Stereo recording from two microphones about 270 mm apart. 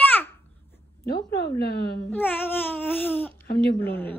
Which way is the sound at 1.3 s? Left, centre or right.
Left.